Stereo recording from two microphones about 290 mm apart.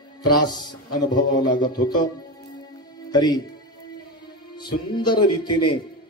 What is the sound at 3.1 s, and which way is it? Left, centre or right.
Speech, centre.